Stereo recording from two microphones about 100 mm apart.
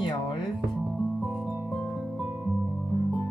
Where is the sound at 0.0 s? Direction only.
55° left (ahead or behind).